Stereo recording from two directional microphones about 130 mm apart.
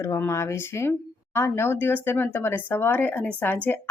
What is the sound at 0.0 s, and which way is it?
Speech, 20° left (ahead or behind).